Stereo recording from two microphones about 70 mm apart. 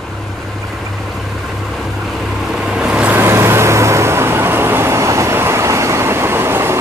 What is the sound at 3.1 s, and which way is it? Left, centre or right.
Vehicle, right.